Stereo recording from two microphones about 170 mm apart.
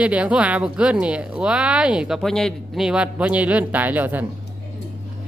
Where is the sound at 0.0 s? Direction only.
5° right (ahead or behind).